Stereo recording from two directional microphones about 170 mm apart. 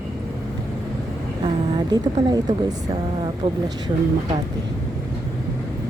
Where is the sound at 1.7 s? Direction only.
25° right (ahead or behind).